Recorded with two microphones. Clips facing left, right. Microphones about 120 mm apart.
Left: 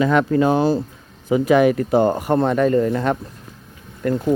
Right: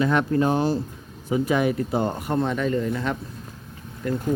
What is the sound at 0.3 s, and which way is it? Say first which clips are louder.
Speech: left 5 dB; 90° left.